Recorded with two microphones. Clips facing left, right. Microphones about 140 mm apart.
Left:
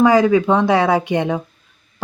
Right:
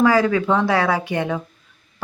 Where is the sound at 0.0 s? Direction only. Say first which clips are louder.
Left 4 dB; 20° left (ahead or behind).